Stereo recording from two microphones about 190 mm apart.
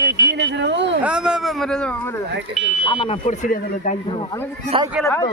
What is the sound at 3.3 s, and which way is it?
Speech, 40° left (ahead or behind).